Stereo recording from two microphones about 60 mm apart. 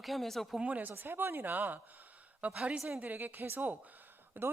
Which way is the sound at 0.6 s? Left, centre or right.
Right.